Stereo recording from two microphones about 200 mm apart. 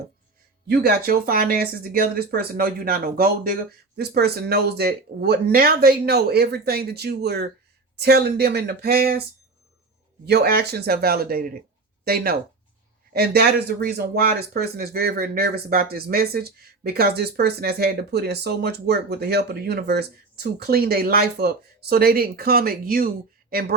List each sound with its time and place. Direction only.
0.9 s speech: 50° right (ahead or behind)
10.2 s speech: 55° right (ahead or behind)